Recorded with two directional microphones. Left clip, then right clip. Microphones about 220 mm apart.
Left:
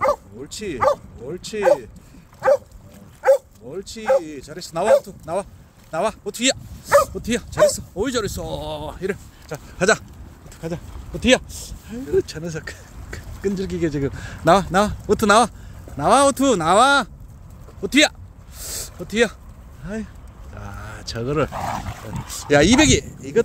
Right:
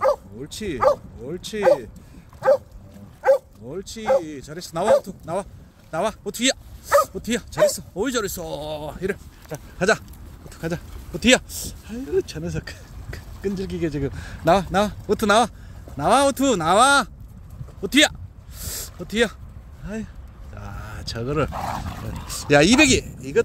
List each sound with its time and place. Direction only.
0.0 s speech: centre (ahead or behind)
3.2 s speech: 5° left (ahead or behind)
10.6 s speech: 15° right (ahead or behind)
11.9 s speech: centre (ahead or behind)
18.6 s a sound: centre (ahead or behind)
19.8 s speech: centre (ahead or behind)